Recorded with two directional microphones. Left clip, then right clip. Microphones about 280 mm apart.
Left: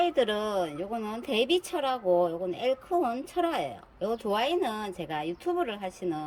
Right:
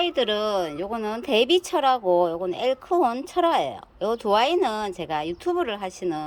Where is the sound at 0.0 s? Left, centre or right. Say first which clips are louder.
Right 3 dB; centre.